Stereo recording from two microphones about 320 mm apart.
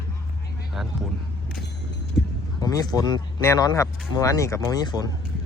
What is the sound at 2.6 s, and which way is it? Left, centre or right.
Speech, centre.